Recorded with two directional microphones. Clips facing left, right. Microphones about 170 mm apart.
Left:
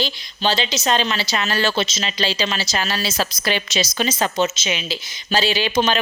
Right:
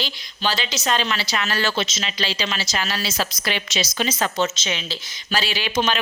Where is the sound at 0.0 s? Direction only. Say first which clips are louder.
Left 4 dB; 25° left (ahead or behind).